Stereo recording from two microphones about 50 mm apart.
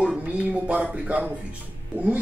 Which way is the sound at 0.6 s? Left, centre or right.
Right.